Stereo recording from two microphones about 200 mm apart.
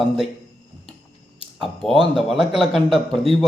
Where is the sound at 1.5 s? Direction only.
Centre (ahead or behind).